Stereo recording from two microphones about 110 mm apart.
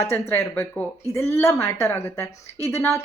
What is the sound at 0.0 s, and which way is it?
Speech, 20° left (ahead or behind).